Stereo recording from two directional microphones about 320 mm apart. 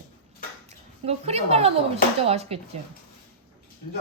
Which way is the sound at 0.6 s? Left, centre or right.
Centre.